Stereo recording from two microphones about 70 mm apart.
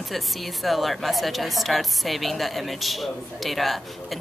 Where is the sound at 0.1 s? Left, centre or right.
Centre.